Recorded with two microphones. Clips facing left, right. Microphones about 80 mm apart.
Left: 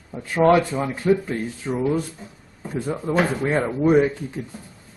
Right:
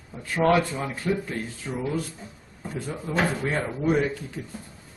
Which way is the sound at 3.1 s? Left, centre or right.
Centre.